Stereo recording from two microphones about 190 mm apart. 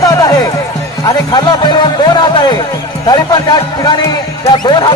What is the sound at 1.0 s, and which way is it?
Speech, 20° left (ahead or behind).